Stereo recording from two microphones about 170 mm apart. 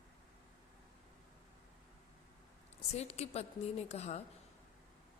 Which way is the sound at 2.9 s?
40° left (ahead or behind).